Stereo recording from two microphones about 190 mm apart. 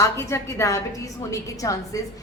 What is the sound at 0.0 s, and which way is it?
A woman's voice, 15° left (ahead or behind).